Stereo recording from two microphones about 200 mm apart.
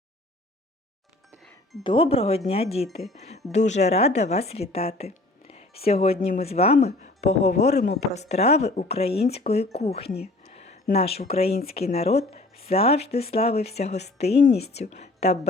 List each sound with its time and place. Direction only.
1.8 s a woman's voice: 25° left (ahead or behind)